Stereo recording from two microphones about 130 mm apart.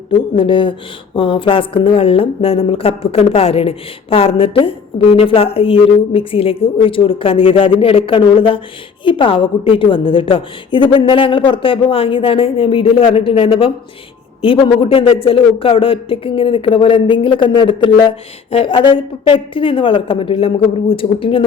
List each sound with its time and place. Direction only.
0.3 s a woman's voice: 40° left (ahead or behind)